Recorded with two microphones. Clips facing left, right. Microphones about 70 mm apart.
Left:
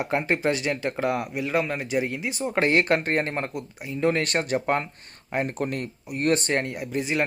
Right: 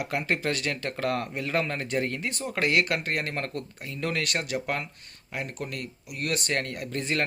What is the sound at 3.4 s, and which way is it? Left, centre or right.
Speech, centre.